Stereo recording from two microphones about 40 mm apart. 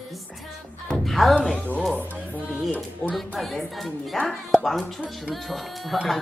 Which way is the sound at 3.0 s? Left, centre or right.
Left.